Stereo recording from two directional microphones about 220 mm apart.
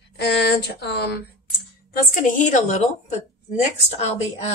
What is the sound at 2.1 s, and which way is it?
Speech, 35° left (ahead or behind).